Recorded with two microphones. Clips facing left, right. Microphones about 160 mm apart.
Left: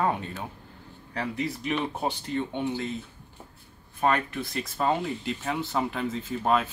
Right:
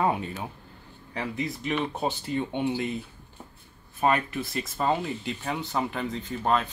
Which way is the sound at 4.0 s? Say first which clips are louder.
Right 1 dB; 5° right (ahead or behind).